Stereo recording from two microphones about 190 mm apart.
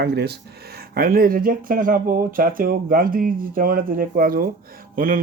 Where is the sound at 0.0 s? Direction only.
60° right (ahead or behind).